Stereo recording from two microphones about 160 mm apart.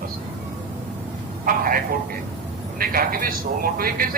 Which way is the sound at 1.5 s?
60° right (ahead or behind).